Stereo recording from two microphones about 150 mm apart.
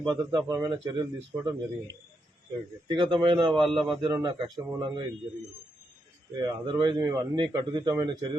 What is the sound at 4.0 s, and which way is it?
A man's voice, 30° right (ahead or behind).